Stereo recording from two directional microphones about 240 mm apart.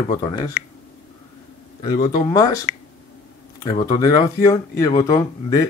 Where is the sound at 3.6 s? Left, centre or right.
Centre.